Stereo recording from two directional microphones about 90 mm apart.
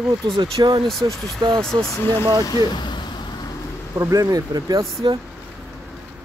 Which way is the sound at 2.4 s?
50° left (ahead or behind).